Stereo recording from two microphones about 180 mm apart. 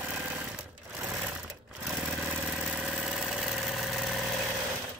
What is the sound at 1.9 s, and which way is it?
Vehicle, 5° right (ahead or behind).